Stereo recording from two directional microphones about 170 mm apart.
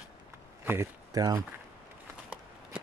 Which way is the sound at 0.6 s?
15° right (ahead or behind).